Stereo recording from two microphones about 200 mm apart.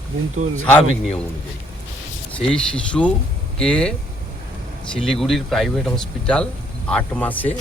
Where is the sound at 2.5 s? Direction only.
5° left (ahead or behind).